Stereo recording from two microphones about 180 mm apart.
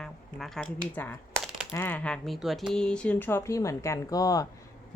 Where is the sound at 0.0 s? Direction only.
Centre (ahead or behind).